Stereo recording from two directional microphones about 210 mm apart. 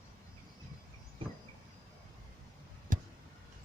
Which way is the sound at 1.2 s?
25° right (ahead or behind).